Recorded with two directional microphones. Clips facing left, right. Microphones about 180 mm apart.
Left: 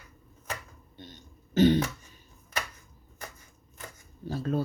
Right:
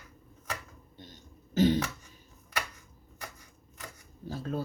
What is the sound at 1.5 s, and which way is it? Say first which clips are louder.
Throat clearing: left 3 dB; 70° left (ahead or behind).